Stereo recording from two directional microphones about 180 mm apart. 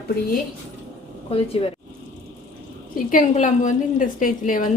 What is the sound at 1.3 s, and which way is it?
Speech, 30° left (ahead or behind).